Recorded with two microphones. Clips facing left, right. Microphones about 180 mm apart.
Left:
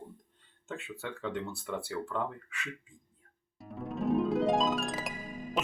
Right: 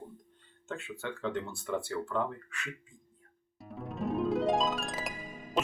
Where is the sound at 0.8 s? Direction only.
Centre (ahead or behind).